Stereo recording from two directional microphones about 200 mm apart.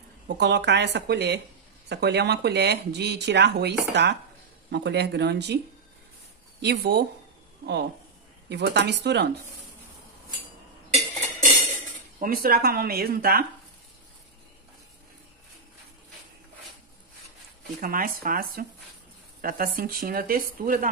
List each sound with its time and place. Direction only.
0.4 s speech: 60° right (ahead or behind)
6.6 s speech: 55° right (ahead or behind)
12.2 s speech: 45° right (ahead or behind)
17.7 s speech: 45° right (ahead or behind)